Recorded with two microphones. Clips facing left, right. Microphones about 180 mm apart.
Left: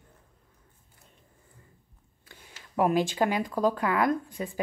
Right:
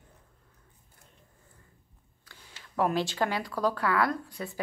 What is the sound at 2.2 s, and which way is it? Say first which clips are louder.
A woman's voice: left 2 dB; 20° left (ahead or behind).